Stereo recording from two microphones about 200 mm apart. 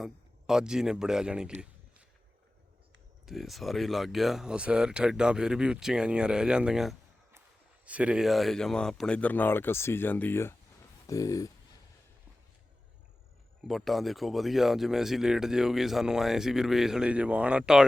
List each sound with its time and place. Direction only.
0.0 s speech: centre (ahead or behind)
3.2 s speech: centre (ahead or behind); by 11.5 s 15° left (ahead or behind)
13.7 s speech: centre (ahead or behind)